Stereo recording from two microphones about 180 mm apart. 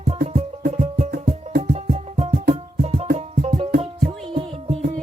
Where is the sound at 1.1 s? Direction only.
55° right (ahead or behind).